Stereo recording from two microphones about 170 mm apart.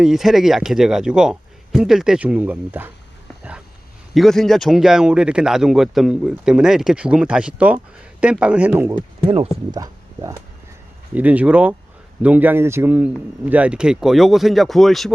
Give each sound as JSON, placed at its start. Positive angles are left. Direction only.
{"t": 0.0, "sound": "speech", "side_deg": 0}
{"t": 4.1, "sound": "speech", "side_deg": 0}
{"t": 9.2, "sound": "speech", "side_deg": -35}
{"t": 9.7, "sound": "speech", "side_deg": -20}